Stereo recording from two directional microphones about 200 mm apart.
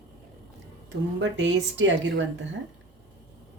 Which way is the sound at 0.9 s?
65° right (ahead or behind).